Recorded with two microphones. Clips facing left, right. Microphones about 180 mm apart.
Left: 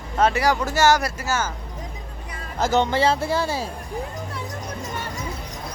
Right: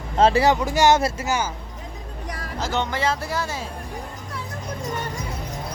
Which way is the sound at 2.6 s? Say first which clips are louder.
Left 6 dB; 45° left (ahead or behind).